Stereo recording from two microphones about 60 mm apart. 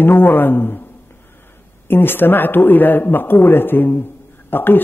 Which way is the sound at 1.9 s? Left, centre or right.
Left.